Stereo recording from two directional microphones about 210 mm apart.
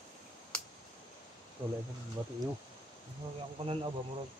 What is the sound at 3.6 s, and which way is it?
Speech, 25° right (ahead or behind).